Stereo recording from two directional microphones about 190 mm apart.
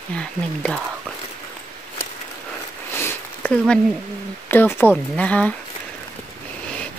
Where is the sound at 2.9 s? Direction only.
10° left (ahead or behind).